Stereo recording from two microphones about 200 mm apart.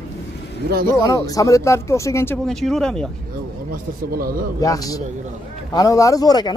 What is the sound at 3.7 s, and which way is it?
Speech, 45° right (ahead or behind).